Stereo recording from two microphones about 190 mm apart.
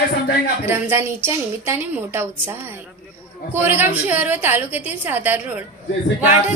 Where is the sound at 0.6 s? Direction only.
10° right (ahead or behind).